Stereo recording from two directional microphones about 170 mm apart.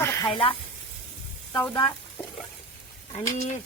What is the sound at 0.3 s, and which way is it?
Speech, 30° left (ahead or behind).